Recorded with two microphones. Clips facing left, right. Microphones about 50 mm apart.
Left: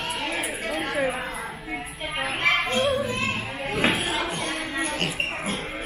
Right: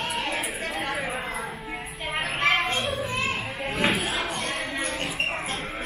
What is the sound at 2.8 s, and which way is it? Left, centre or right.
Children playing, centre.